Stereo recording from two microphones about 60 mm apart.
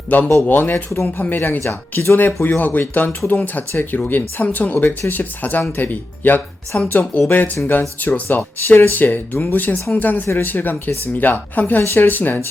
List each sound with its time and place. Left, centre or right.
0.1 s speech: left
2.1 s speech: left
11.8 s speech: left
12.0 s speech: left